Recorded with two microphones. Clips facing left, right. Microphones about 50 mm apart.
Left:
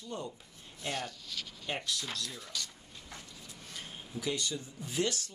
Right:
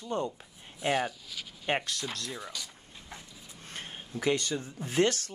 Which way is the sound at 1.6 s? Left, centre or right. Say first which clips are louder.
Right 6 dB; right.